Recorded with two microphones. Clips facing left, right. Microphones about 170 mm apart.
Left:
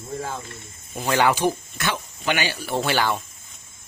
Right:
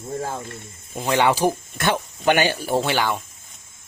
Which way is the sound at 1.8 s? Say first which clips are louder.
Right 6 dB; 50° right (ahead or behind).